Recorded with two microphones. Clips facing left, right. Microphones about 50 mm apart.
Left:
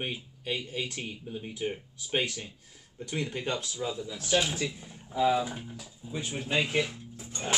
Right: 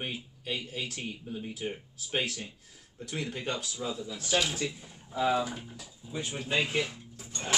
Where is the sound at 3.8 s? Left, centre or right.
Centre.